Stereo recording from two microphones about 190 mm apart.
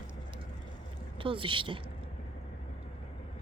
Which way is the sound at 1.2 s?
25° right (ahead or behind).